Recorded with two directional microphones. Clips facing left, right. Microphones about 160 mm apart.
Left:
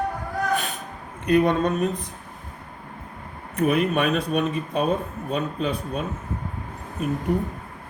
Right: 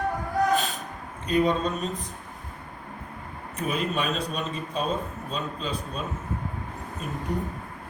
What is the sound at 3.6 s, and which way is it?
Speech, 65° left (ahead or behind).